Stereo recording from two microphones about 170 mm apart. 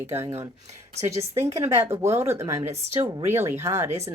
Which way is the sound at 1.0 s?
15° right (ahead or behind).